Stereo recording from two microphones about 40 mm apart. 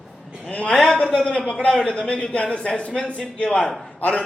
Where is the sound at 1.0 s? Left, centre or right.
Centre.